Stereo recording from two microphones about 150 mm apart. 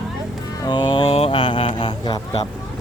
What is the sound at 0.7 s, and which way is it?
Mantra, 30° left (ahead or behind).